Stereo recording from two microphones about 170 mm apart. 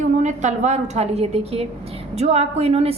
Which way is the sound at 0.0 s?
45° right (ahead or behind).